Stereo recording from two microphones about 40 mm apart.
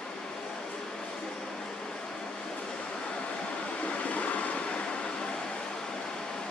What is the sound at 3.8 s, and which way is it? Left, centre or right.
Vehicle, left.